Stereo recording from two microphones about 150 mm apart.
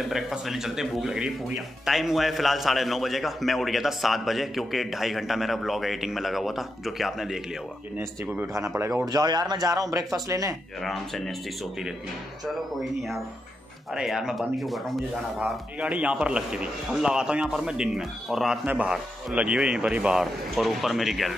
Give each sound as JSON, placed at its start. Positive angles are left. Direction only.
{"t": 0.1, "sound": "speech", "side_deg": 0}
{"t": 8.0, "sound": "speech", "side_deg": -15}
{"t": 10.8, "sound": "speech", "side_deg": 0}
{"t": 12.5, "sound": "speech", "side_deg": 0}